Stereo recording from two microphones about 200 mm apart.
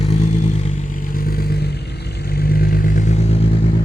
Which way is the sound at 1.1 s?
50° left (ahead or behind).